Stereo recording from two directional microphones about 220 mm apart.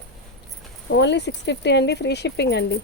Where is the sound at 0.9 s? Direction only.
50° left (ahead or behind).